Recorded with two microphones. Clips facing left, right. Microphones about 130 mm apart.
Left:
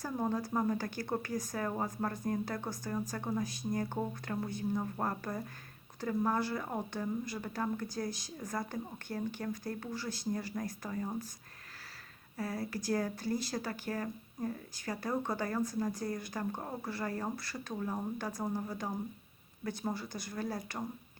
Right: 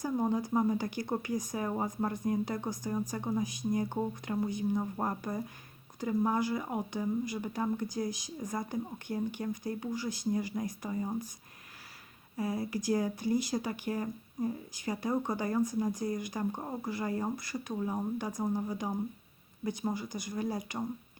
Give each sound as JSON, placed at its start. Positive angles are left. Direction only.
{"t": 0.0, "sound": "speech", "side_deg": -15}
{"t": 12.4, "sound": "speech", "side_deg": -15}